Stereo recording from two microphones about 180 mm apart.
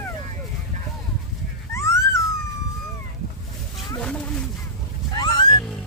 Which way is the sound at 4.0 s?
5° left (ahead or behind).